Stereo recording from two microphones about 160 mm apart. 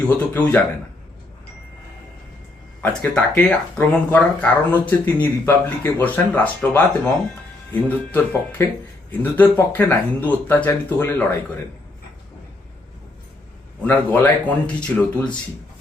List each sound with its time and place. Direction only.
0.1 s speech: 10° left (ahead or behind)
2.8 s speech: 10° left (ahead or behind)
13.8 s speech: 10° left (ahead or behind)